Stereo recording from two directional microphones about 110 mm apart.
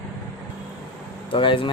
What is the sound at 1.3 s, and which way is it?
Speech, 50° left (ahead or behind).